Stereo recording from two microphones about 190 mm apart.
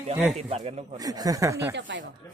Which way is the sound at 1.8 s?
70° right (ahead or behind).